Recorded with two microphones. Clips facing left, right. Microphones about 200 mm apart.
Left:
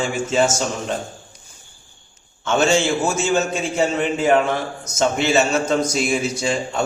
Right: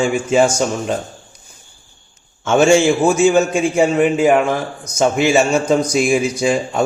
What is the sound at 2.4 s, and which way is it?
Speech, 15° right (ahead or behind).